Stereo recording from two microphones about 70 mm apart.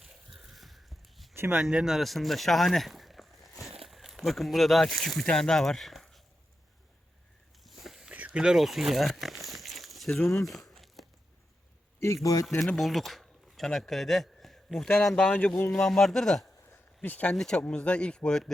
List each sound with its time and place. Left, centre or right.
0.0 s biting: centre
1.4 s speech: right
1.6 s speech: centre
7.6 s a sound: centre
8.1 s crumpling: centre
10.4 s a sound: centre
11.9 s a man's voice: left
12.7 s speech: centre
17.0 s speech: left
17.3 s speech: centre